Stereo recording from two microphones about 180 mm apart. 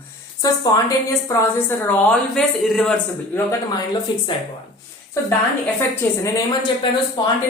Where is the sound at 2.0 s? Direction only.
Centre (ahead or behind).